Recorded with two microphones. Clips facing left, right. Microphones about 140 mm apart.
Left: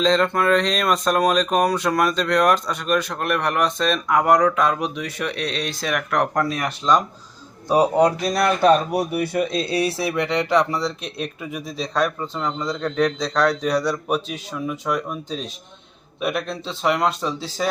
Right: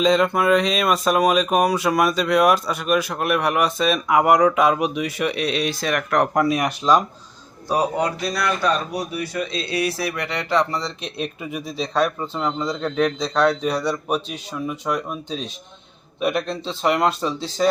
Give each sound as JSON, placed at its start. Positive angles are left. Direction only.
{"t": 0.0, "sound": "speech", "side_deg": -10}
{"t": 7.9, "sound": "speech", "side_deg": 40}
{"t": 8.6, "sound": "speech", "side_deg": 55}
{"t": 10.8, "sound": "speech", "side_deg": 0}